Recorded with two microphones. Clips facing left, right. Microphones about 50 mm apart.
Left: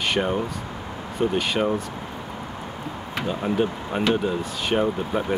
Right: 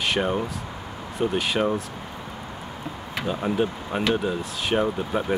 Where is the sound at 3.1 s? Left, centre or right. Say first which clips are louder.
Left 1 dB; centre.